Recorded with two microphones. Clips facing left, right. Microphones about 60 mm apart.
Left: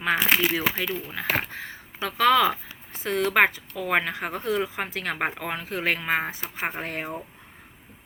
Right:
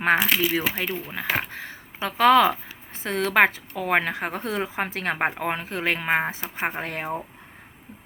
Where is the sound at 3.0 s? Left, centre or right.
Right.